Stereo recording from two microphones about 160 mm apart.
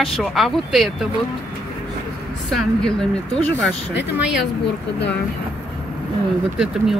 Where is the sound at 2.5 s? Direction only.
5° left (ahead or behind).